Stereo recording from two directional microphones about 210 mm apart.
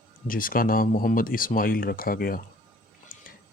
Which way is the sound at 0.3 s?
40° left (ahead or behind).